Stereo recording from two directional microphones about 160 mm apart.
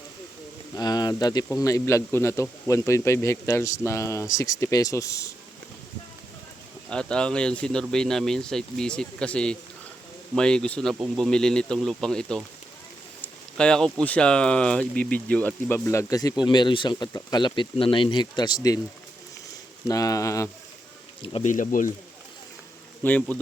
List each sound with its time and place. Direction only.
0.8 s speech: 25° left (ahead or behind)
6.9 s speech: 5° left (ahead or behind)
13.2 s a sound: 5° left (ahead or behind)
14.0 s speech: 5° left (ahead or behind); by 18.8 s 25° left (ahead or behind)
19.9 s speech: 20° left (ahead or behind)
21.4 s speech: 55° left (ahead or behind)
23.0 s speech: 10° left (ahead or behind)